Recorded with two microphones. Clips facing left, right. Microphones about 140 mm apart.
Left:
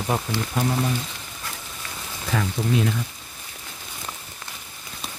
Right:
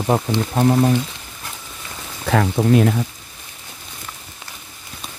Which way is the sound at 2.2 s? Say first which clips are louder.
Right 8 dB; 60° right (ahead or behind).